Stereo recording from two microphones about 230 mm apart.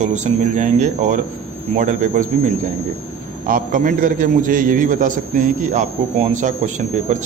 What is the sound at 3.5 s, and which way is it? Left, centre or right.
A man's voice, right.